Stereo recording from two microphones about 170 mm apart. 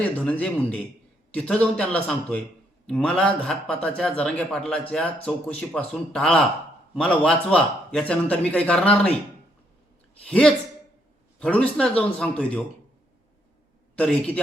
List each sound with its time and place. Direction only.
0.0 s a man's voice: 10° left (ahead or behind)
10.2 s a man's voice: 5° left (ahead or behind)
13.9 s a man's voice: 10° left (ahead or behind)